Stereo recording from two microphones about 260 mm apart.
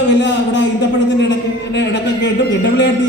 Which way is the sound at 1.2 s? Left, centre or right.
Left.